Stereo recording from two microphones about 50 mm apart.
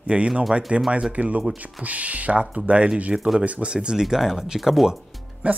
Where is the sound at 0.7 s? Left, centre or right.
Right; by 4.9 s centre.